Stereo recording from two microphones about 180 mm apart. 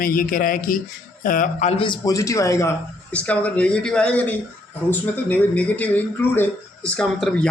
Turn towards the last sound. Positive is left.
turn(degrees=5)  # may be behind; listen again after turning